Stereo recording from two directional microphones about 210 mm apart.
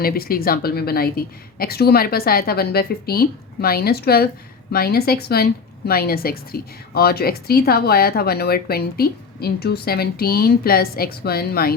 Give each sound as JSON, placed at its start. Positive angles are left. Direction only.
{"t": 0.0, "sound": "a woman's voice", "side_deg": 45}